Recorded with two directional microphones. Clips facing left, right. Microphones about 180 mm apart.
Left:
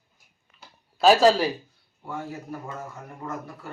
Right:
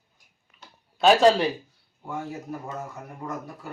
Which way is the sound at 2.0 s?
20° right (ahead or behind).